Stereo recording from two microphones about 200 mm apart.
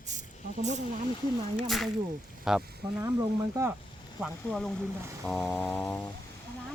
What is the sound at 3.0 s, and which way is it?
Speech, 15° right (ahead or behind).